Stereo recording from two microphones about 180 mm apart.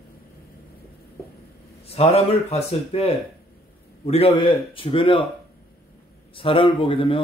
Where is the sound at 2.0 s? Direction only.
35° left (ahead or behind).